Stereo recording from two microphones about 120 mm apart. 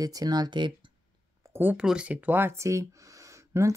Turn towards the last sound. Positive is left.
turn(degrees=-25)  # may be behind; listen again after turning